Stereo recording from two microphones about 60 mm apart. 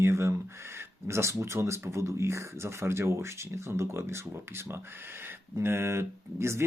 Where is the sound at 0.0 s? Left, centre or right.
Right.